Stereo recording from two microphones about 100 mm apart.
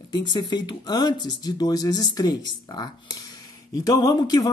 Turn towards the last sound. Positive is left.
turn(degrees=40)  # may be behind; listen again after turning